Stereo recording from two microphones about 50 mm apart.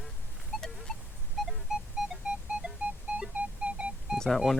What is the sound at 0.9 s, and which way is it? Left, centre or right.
Music, centre.